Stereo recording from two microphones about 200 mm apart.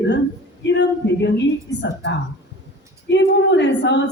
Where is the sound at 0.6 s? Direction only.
65° left (ahead or behind).